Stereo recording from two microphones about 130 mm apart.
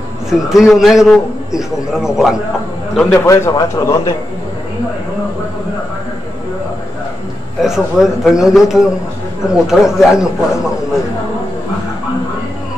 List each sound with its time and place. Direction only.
0.3 s a man's voice: 5° right (ahead or behind)
3.1 s a man's voice: 25° left (ahead or behind)
7.6 s a man's voice: 5° right (ahead or behind)